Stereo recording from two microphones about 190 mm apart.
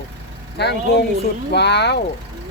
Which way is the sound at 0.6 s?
60° left (ahead or behind).